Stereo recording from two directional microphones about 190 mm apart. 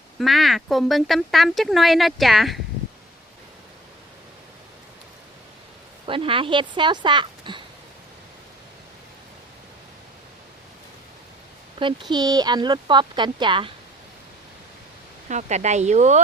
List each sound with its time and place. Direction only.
0.2 s speech: centre (ahead or behind)
6.1 s speech: 25° right (ahead or behind)
11.8 s speech: 25° right (ahead or behind)
15.3 s speech: 40° right (ahead or behind)